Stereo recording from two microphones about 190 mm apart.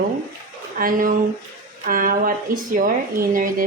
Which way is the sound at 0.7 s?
45° right (ahead or behind).